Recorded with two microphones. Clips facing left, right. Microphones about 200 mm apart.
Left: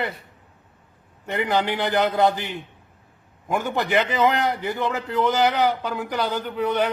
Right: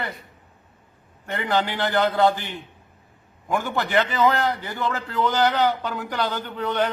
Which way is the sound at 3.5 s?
20° left (ahead or behind).